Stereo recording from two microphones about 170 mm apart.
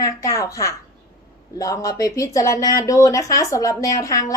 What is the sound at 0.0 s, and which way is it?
A woman's voice, 20° left (ahead or behind).